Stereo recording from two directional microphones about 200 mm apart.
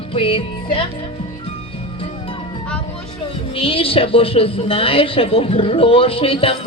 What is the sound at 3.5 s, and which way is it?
A woman's voice, 25° left (ahead or behind).